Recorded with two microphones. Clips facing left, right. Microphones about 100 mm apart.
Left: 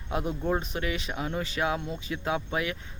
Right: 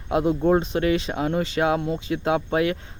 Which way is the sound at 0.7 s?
50° right (ahead or behind).